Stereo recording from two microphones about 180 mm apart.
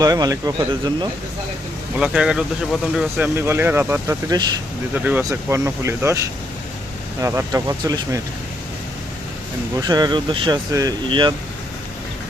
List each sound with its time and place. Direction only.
0.0 s speech: 20° right (ahead or behind)
2.0 s speech: 5° right (ahead or behind); by 4.5 s 20° right (ahead or behind)
4.9 s speech: 10° right (ahead or behind)
9.8 s speech: 20° right (ahead or behind)